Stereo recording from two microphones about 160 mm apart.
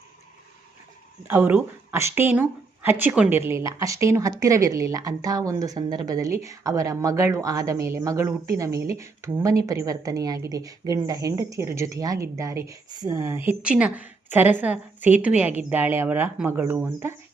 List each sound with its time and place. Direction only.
1.3 s speech: 10° right (ahead or behind)